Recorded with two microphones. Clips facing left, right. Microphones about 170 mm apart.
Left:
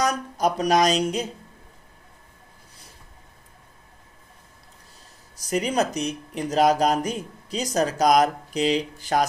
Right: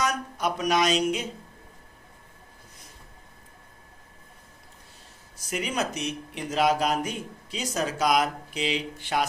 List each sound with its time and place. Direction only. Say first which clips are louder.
0.0 s speech: left 4 dB; 35° left (ahead or behind)
5.4 s speech: left 6 dB; 35° left (ahead or behind)